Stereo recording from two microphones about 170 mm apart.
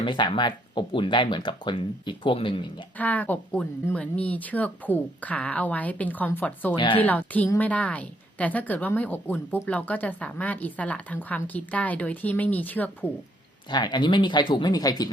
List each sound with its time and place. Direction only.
0.0 s speech: 30° left (ahead or behind)
3.0 s a woman's voice: 10° left (ahead or behind)
6.7 s speech: 30° left (ahead or behind)
7.0 s a woman's voice: 10° left (ahead or behind)
13.7 s speech: 25° left (ahead or behind)